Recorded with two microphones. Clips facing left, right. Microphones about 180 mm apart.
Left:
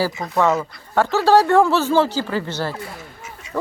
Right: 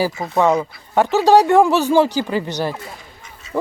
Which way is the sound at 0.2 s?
5° right (ahead or behind).